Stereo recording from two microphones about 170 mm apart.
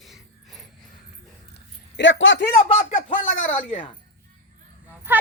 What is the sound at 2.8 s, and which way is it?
Speech, 50° left (ahead or behind).